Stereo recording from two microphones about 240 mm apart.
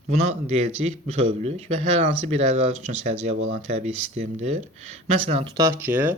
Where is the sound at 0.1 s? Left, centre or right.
Right.